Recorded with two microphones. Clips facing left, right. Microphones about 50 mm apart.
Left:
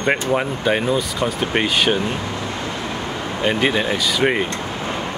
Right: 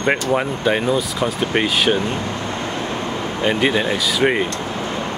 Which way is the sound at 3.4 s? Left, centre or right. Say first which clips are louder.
Right 1 dB; centre.